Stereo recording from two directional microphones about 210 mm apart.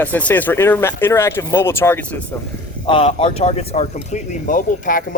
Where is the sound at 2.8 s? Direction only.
25° left (ahead or behind).